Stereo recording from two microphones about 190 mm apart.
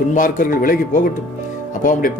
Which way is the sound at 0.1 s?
45° left (ahead or behind).